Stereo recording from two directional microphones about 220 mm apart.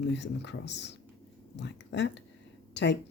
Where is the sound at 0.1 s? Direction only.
55° left (ahead or behind).